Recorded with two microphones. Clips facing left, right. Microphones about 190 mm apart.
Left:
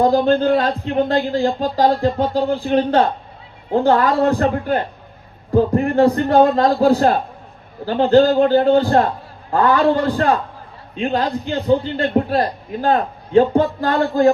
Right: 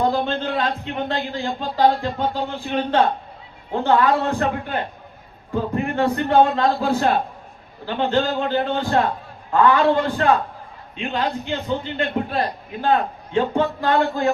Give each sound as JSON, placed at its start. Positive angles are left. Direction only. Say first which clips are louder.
{"t": 0.0, "sound": "a man's voice", "louder": "left 7 dB", "side_deg": 40}